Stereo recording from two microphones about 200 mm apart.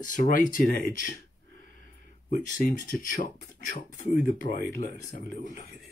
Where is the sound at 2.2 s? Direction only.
40° left (ahead or behind).